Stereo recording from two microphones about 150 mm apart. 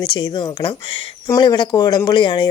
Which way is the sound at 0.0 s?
30° left (ahead or behind).